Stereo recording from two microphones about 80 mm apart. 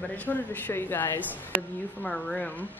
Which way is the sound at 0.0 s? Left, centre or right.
Left.